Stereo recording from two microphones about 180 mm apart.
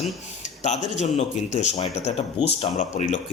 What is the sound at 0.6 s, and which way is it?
Speech, 40° left (ahead or behind).